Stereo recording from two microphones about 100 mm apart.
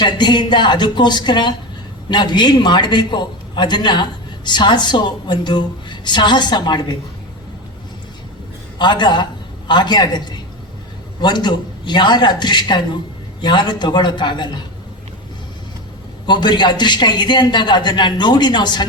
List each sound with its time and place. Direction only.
0.0 s a man's voice: 50° left (ahead or behind)
8.8 s a man's voice: 50° left (ahead or behind)
16.2 s a man's voice: 50° left (ahead or behind)